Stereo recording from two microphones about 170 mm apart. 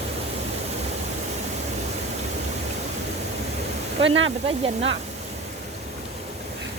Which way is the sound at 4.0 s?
90° right.